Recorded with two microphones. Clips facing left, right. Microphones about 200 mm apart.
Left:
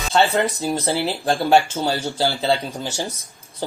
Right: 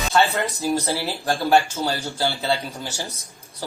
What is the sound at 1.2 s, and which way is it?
A man's voice, 15° left (ahead or behind).